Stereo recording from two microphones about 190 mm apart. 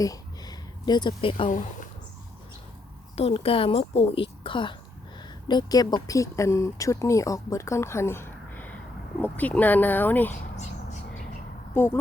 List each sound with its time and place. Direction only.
0.0 s a sound: 20° left (ahead or behind)
1.5 s speech: 45° left (ahead or behind)
3.2 s speech: 30° left (ahead or behind); by 10.3 s 10° left (ahead or behind)
11.7 s speech: 10° left (ahead or behind)